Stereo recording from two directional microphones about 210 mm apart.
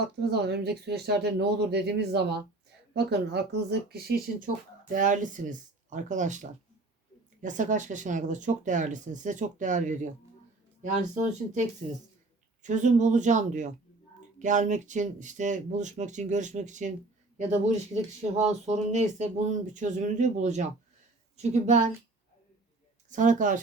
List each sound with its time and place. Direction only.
0.0 s speech: 50° right (ahead or behind); by 11.6 s 35° right (ahead or behind)
12.6 s speech: 35° right (ahead or behind)
23.0 s speech: 35° right (ahead or behind)